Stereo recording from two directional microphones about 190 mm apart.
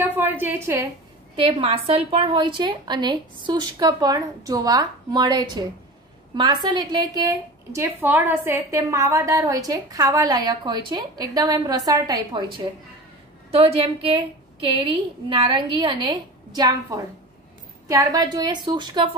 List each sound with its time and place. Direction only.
0.0 s a woman's voice: 10° right (ahead or behind)
1.3 s a woman's voice: 30° right (ahead or behind)